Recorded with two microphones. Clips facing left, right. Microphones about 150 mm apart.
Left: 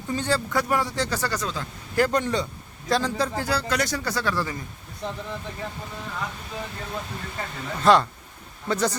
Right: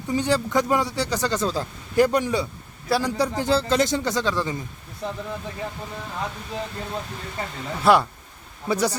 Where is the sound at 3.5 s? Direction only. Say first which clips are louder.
Right 5 dB; 25° right (ahead or behind).